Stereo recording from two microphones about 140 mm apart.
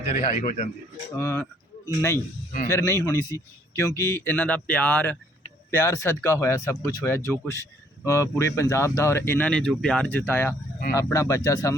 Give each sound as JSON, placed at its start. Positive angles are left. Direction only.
{"t": 0.3, "sound": "speech", "side_deg": 55}
{"t": 1.1, "sound": "a man's voice", "side_deg": 20}